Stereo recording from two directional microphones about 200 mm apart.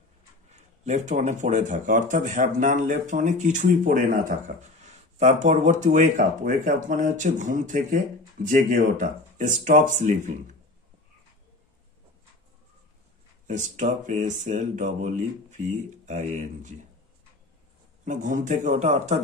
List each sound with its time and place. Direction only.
0.5 s speech: 35° right (ahead or behind)
13.5 s speech: 40° right (ahead or behind)
18.0 s speech: 40° right (ahead or behind)